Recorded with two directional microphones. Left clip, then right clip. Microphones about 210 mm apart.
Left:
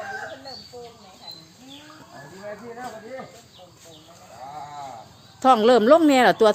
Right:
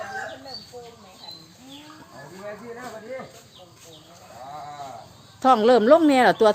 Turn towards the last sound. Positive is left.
turn(degrees=5)  # may be behind; listen again after turning